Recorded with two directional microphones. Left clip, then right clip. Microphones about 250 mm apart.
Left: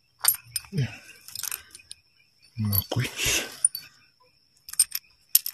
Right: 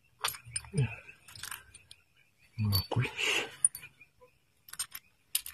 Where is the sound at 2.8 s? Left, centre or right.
Left.